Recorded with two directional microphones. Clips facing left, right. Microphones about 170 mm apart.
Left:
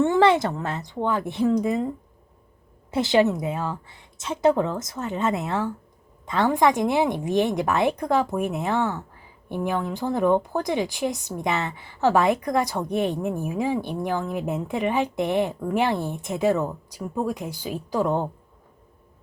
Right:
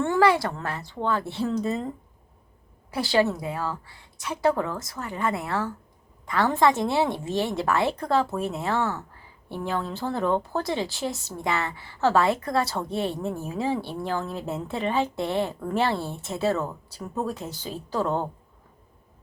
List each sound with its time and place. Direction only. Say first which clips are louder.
0.0 s speech: left 3 dB; 20° left (ahead or behind)
2.9 s a woman's voice: left 3 dB; 20° left (ahead or behind)